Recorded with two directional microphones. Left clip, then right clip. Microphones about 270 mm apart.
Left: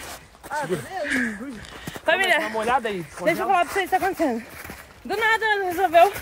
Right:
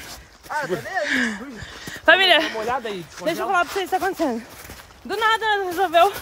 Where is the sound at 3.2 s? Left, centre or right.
Centre.